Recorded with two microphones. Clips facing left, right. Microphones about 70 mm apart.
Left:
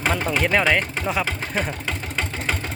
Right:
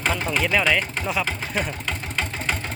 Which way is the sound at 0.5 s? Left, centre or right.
Left.